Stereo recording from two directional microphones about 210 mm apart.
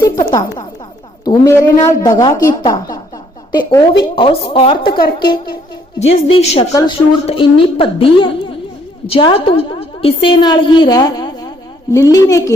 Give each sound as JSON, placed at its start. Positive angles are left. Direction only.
{"t": 0.0, "sound": "a sound", "side_deg": 20}
{"t": 1.2, "sound": "a woman's voice", "side_deg": 15}
{"t": 4.9, "sound": "a woman's voice", "side_deg": 45}
{"t": 6.2, "sound": "a woman's voice", "side_deg": 30}